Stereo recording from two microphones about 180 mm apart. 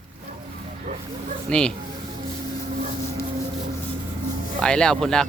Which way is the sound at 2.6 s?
45° right (ahead or behind).